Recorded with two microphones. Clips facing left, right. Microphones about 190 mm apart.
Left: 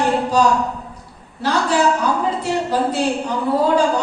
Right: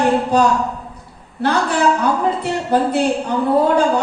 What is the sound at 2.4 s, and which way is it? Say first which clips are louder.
Speech: right 2 dB; 60° right (ahead or behind).